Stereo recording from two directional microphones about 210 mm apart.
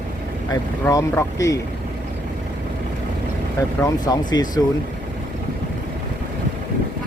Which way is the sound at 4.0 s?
20° left (ahead or behind).